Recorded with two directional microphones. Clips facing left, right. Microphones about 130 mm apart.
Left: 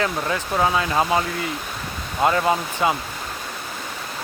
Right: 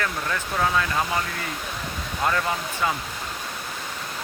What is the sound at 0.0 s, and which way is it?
Speech, 20° left (ahead or behind).